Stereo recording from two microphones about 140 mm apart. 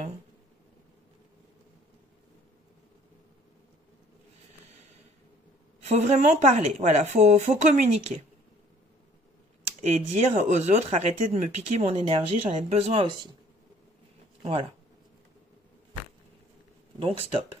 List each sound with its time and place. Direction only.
5.9 s speech: 55° right (ahead or behind)
9.8 s speech: 50° right (ahead or behind)
14.4 s speech: 45° right (ahead or behind)
17.0 s speech: 45° right (ahead or behind)